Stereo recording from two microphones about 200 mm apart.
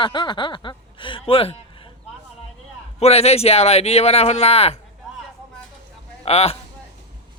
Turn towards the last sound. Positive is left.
turn(degrees=30)  # may be behind; listen again after turning